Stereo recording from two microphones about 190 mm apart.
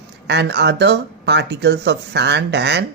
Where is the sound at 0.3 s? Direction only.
65° right (ahead or behind).